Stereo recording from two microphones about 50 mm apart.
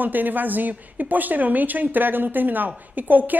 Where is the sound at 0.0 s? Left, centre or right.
Right.